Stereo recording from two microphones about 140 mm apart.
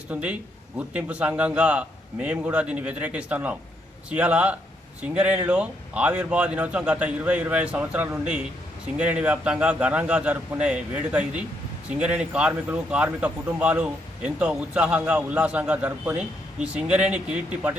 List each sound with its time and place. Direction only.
0.1 s speech: 10° right (ahead or behind)